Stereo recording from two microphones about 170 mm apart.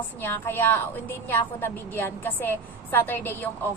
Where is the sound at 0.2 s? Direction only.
10° left (ahead or behind).